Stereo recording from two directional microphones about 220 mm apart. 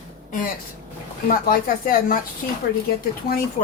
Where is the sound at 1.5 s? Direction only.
40° left (ahead or behind).